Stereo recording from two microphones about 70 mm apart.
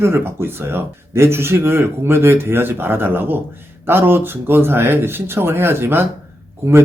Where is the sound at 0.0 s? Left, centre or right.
Right.